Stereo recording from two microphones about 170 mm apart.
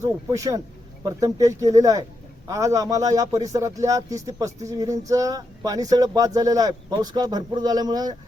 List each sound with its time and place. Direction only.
0.0 s speech: 20° right (ahead or behind)